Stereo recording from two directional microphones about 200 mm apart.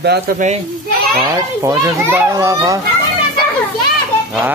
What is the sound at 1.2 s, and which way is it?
Speech, 15° right (ahead or behind).